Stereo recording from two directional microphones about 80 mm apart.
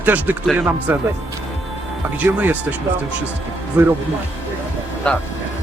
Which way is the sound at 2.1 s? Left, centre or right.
Right.